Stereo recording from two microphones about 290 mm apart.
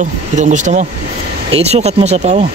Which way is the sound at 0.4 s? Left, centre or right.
Right.